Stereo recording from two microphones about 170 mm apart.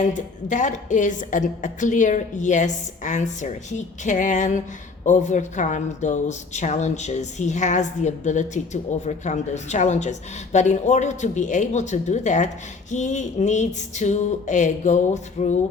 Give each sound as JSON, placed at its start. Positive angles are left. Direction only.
{"t": 0.0, "sound": "speech", "side_deg": 45}